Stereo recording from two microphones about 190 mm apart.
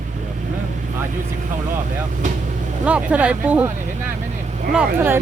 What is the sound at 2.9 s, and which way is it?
Speech, 5° right (ahead or behind).